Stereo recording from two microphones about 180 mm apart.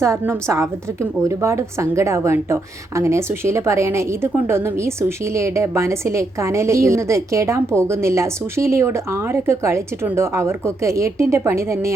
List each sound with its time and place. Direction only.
0.0 s a woman's voice: 15° right (ahead or behind)